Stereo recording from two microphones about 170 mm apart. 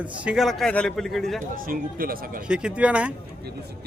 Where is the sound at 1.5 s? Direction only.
55° right (ahead or behind).